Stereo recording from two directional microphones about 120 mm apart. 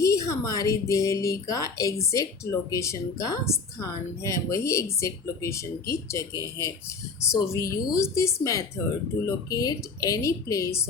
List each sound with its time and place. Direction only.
0.0 s a woman's voice: 25° left (ahead or behind)